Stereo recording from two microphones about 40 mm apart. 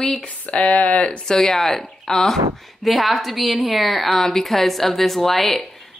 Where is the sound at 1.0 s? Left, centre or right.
Centre.